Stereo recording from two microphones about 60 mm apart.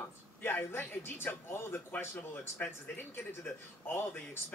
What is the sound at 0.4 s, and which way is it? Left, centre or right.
A man's voice, left.